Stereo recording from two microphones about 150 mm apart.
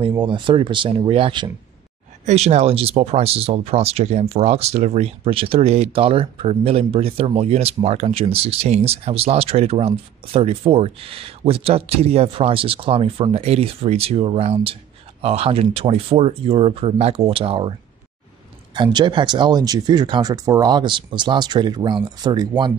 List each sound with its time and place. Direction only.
0.2 s speech: 35° right (ahead or behind)
2.2 s speech: 45° right (ahead or behind)
18.8 s speech: 30° right (ahead or behind)